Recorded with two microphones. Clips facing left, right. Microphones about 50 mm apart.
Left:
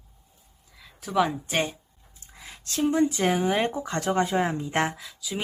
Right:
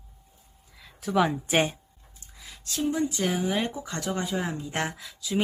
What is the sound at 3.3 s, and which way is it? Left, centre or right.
Speech, left.